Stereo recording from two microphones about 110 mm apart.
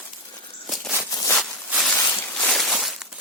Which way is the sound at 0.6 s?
Centre (ahead or behind).